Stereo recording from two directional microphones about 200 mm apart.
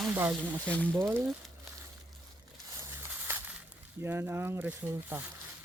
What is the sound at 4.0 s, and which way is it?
Speech, 10° right (ahead or behind).